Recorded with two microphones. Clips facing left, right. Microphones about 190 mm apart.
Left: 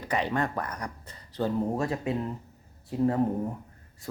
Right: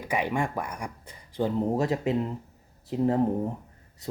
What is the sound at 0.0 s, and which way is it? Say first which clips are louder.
Speech: right 1 dB; 10° right (ahead or behind).